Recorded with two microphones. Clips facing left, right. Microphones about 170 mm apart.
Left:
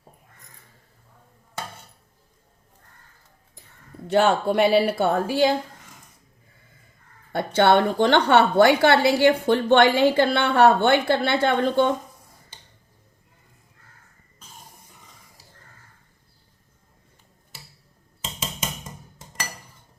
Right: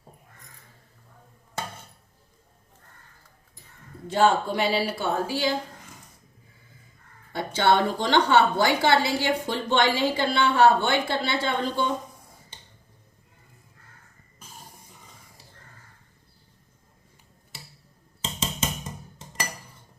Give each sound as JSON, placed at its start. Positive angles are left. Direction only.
{"t": 4.0, "sound": "a woman's voice", "side_deg": 65}
{"t": 7.3, "sound": "a woman's voice", "side_deg": 60}